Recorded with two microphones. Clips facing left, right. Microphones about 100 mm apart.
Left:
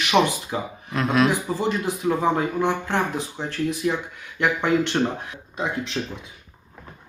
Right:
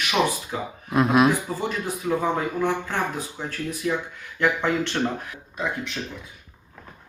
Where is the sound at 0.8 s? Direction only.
20° right (ahead or behind).